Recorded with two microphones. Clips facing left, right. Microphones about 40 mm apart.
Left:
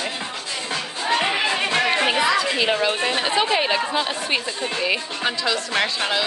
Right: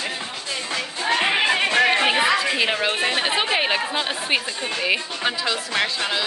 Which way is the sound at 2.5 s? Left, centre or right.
Centre.